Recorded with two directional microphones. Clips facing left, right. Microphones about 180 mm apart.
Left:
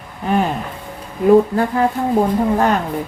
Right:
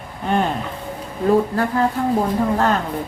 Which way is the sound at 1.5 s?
15° left (ahead or behind).